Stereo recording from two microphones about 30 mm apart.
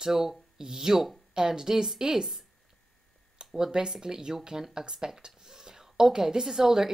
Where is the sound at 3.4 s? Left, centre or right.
Right.